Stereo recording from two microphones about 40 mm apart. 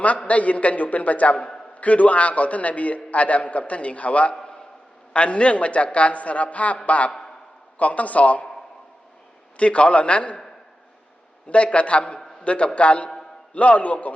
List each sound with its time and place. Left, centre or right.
0.3 s a man's voice: left
9.6 s a man's voice: left
11.4 s a man's voice: left